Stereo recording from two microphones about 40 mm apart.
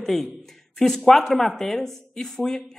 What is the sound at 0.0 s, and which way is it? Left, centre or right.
A man's voice, centre.